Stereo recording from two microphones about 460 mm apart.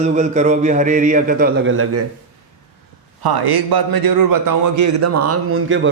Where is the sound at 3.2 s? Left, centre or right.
Right.